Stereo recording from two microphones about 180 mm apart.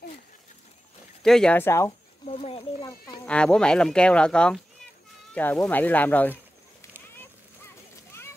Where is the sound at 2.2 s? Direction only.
30° left (ahead or behind).